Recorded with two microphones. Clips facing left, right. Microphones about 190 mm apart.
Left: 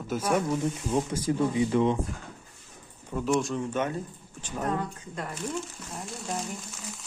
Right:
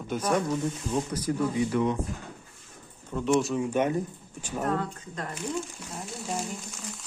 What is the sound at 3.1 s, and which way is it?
Speech, centre (ahead or behind).